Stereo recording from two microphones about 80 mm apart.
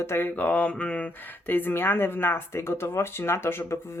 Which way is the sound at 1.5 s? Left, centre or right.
Left.